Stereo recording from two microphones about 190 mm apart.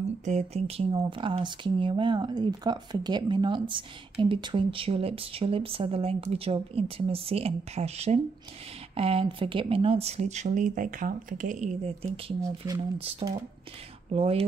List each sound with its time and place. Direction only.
0.2 s speech: 35° right (ahead or behind)
12.4 s speech: 20° right (ahead or behind)
13.2 s speech: 30° right (ahead or behind)